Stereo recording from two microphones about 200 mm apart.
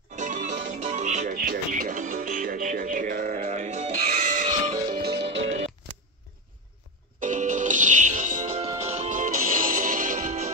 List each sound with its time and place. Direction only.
0.1 s music: 40° right (ahead or behind)
5.0 s music: 55° right (ahead or behind)
7.2 s music: 40° right (ahead or behind)